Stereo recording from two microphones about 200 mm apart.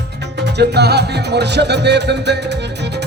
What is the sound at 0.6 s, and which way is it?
Music, 55° right (ahead or behind).